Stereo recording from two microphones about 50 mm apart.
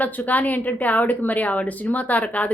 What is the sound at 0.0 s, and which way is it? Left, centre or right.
A woman's voice, left.